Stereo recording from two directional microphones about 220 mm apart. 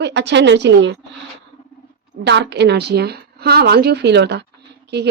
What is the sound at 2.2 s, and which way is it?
Speech, 50° right (ahead or behind).